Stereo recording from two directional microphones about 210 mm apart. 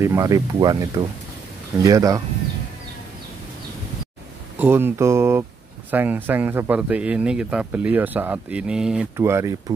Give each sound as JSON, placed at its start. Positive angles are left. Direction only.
{"t": 0.0, "sound": "speech", "side_deg": -15}
{"t": 4.6, "sound": "speech", "side_deg": -10}